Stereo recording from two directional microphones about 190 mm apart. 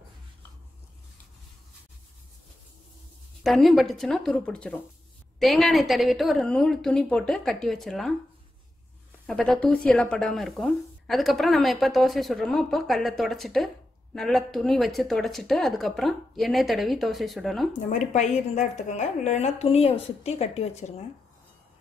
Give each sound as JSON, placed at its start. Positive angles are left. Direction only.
{"t": 3.4, "sound": "speech", "side_deg": 0}
{"t": 9.2, "sound": "speech", "side_deg": 5}
{"t": 17.8, "sound": "a woman's voice", "side_deg": 40}